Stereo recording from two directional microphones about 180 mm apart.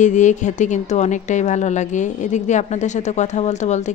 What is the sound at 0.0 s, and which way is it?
Speech, 40° left (ahead or behind).